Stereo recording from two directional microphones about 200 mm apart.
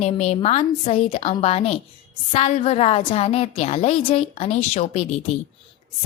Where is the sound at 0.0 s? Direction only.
30° left (ahead or behind).